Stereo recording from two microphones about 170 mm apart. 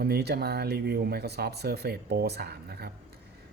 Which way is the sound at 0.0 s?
70° right (ahead or behind).